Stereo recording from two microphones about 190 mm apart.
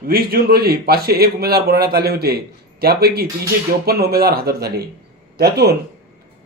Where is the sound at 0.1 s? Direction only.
55° right (ahead or behind).